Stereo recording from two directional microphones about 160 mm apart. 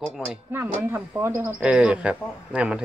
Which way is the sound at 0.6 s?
15° right (ahead or behind).